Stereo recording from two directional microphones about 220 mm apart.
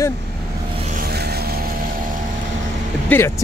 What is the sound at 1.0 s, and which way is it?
Vehicle, 45° right (ahead or behind).